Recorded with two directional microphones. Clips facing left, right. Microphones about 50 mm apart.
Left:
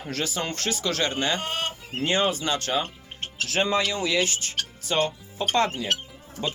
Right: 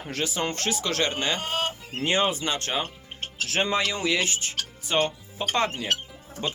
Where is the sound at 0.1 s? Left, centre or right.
Centre.